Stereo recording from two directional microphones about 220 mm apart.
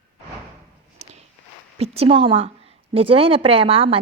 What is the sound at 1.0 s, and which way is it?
Walk, 30° right (ahead or behind).